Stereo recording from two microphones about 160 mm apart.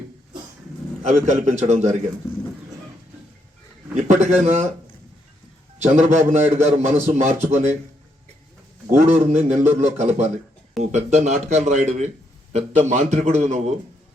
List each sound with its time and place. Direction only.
1.0 s a man's voice: 45° right (ahead or behind)
3.9 s a man's voice: 50° right (ahead or behind)
5.8 s a man's voice: 45° right (ahead or behind)
8.9 s a man's voice: 50° right (ahead or behind)